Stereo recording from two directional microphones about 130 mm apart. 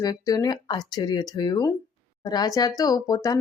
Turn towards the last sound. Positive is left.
turn(degrees=25)  # may be behind; listen again after turning